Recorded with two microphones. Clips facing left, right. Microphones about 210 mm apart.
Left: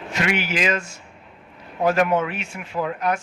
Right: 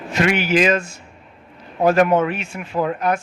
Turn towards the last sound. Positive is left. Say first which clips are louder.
# right 4 dB
turn(degrees=-50)  # may be behind; listen again after turning